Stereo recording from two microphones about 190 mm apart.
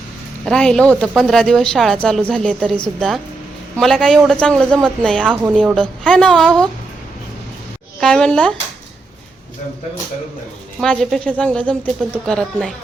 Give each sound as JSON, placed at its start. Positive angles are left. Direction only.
{"t": 0.4, "sound": "speech", "side_deg": 5}
{"t": 8.0, "sound": "speech", "side_deg": 5}
{"t": 10.8, "sound": "speech", "side_deg": 0}